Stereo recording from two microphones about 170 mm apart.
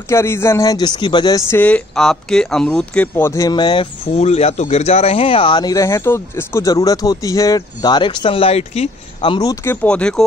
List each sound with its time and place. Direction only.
0.1 s speech: 15° left (ahead or behind)
1.6 s speech: 5° left (ahead or behind); by 9.8 s 20° left (ahead or behind)
9.8 s speech: 5° left (ahead or behind)